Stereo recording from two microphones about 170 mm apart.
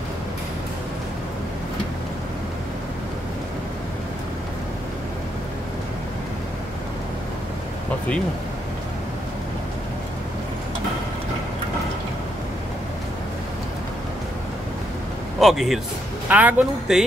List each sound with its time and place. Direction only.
15.4 s speech: centre (ahead or behind)